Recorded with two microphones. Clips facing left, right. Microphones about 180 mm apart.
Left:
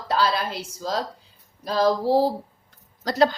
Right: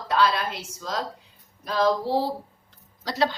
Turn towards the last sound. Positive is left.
turn(degrees=45)  # may be behind; listen again after turning